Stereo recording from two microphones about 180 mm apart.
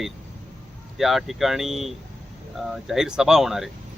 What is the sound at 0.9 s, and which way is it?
Speech, centre (ahead or behind).